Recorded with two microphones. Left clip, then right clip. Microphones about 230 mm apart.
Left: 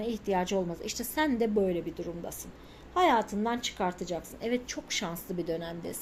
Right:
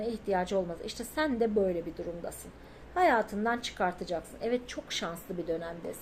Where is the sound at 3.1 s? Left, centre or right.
Left.